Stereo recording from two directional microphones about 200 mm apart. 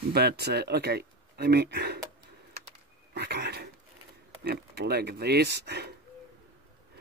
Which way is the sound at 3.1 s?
55° right (ahead or behind).